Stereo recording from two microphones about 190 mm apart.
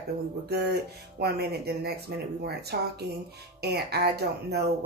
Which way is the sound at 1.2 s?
55° right (ahead or behind).